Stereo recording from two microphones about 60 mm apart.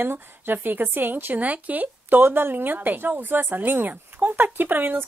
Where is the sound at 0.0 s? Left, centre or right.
Right.